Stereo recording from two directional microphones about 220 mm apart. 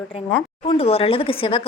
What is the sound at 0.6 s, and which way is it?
Speech, 25° left (ahead or behind).